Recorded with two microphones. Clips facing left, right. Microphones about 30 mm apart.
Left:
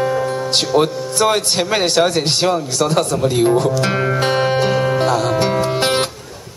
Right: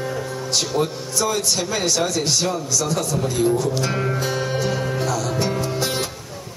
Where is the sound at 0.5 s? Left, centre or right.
Left.